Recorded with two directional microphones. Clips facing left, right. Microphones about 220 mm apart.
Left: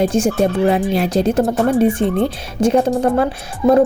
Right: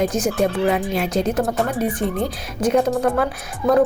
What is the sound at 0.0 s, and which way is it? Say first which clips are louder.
Speech: left 4 dB; 30° left (ahead or behind).